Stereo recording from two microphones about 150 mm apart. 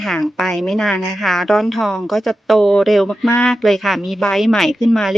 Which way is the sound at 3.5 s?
Centre (ahead or behind).